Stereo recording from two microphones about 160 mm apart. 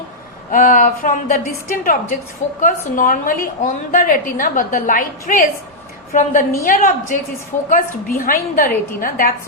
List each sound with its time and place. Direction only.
0.5 s a woman's voice: 55° left (ahead or behind)